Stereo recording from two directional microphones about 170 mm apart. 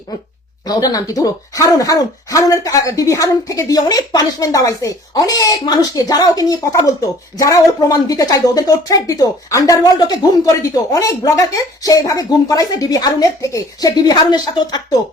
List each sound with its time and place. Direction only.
0.6 s a woman's voice: 25° left (ahead or behind)